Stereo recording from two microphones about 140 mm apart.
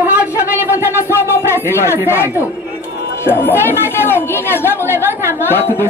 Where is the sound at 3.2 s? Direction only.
15° left (ahead or behind).